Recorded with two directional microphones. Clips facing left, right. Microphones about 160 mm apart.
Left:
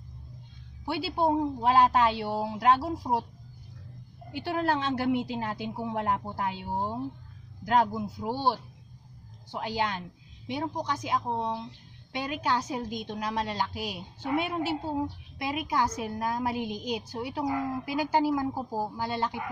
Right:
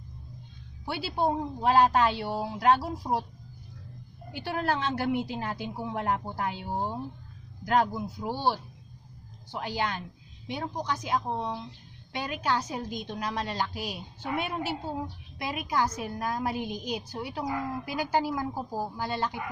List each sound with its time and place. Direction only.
0.8 s a woman's voice: 20° left (ahead or behind)
4.3 s a woman's voice: 20° left (ahead or behind)